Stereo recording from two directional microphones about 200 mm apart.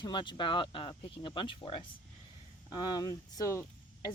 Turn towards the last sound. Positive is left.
turn(degrees=15)  # may be behind; listen again after turning